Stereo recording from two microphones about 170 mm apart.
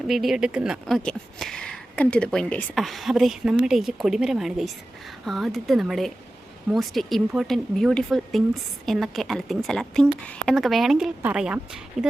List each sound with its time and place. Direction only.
0.1 s speech: centre (ahead or behind)